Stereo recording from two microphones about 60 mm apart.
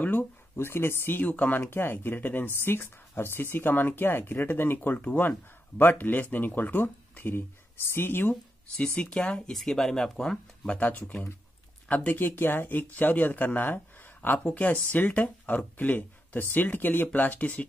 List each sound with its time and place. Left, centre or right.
0.0 s a sound: left
0.6 s speech: left
1.3 s speech: left
1.7 s speech: left
8.7 s speech: centre
10.7 s speech: left